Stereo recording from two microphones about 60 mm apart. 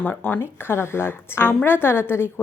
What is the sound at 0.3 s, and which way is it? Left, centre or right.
Speech, left.